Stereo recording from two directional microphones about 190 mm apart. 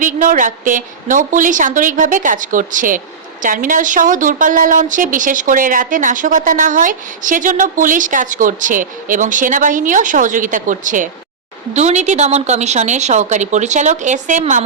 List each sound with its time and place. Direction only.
0.0 s a woman's voice: 45° right (ahead or behind)